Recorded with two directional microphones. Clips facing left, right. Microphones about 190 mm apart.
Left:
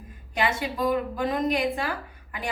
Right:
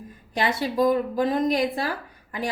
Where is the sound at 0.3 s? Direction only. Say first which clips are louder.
Right 4 dB; 40° right (ahead or behind).